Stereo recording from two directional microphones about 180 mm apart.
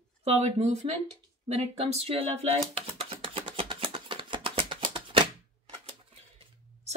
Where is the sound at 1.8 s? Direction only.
35° right (ahead or behind).